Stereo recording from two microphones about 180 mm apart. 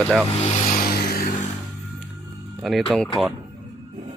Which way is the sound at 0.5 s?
50° left (ahead or behind).